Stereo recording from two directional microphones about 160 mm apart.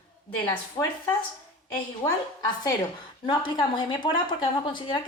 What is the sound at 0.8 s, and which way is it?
Speech, 30° left (ahead or behind).